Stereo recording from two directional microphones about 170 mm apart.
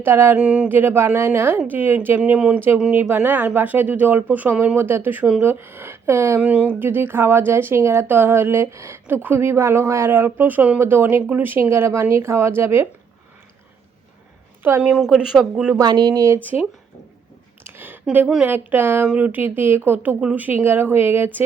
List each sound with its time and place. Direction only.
0.0 s speech: 15° right (ahead or behind)
14.6 s speech: 10° right (ahead or behind)
15.8 s speech: 25° right (ahead or behind)